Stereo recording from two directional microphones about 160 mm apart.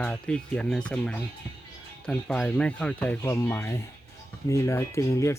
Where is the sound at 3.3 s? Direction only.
20° left (ahead or behind).